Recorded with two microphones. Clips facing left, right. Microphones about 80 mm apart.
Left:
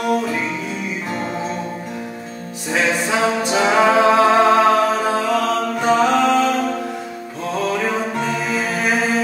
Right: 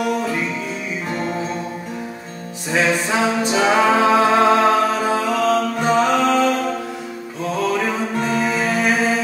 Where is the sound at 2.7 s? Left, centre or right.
Centre.